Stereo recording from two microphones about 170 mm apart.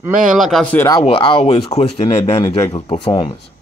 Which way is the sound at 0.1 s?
50° right (ahead or behind).